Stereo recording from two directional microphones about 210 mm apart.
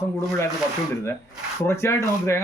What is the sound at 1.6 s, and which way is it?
Speech, 15° left (ahead or behind).